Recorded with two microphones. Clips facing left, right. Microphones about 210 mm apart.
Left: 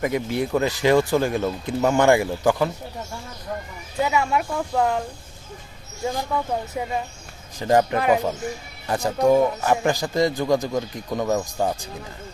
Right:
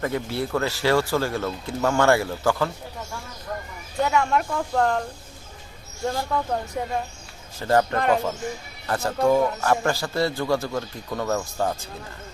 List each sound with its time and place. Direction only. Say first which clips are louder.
0.0 s a man's voice: left 3 dB; 15° left (ahead or behind)
4.0 s speech: even; 5° left (ahead or behind)
6.3 s speech: even; 5° left (ahead or behind)
7.6 s a man's voice: left 2 dB; 15° left (ahead or behind)